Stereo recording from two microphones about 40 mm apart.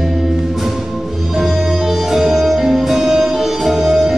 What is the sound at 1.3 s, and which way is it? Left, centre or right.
Music, centre.